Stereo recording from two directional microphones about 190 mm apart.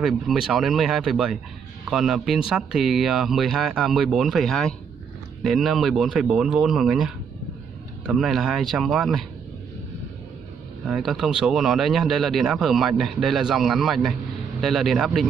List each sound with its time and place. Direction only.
0.0 s speech: 5° right (ahead or behind)
8.1 s speech: centre (ahead or behind)
10.9 s speech: centre (ahead or behind)